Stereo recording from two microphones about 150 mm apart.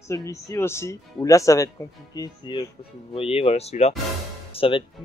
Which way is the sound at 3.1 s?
40° left (ahead or behind).